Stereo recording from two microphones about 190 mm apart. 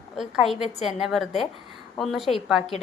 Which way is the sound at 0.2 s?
Centre (ahead or behind).